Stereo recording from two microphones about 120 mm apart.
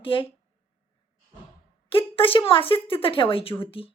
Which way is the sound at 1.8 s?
50° left (ahead or behind).